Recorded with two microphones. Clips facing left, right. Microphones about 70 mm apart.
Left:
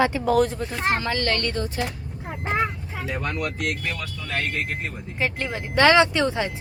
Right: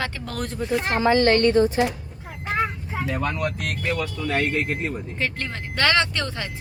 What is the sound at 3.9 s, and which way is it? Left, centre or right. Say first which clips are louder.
Speech: right 5 dB; right.